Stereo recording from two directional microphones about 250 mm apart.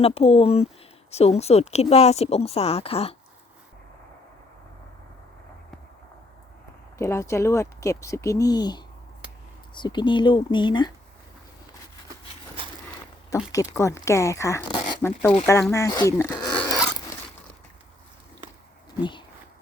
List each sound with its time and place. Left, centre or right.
0.0 s speech: left
7.0 s speech: centre
13.5 s speech: centre